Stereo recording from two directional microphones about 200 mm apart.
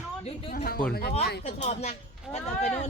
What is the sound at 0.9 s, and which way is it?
Speech, 50° left (ahead or behind).